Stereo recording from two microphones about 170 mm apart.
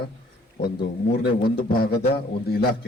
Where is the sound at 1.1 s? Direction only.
65° left (ahead or behind).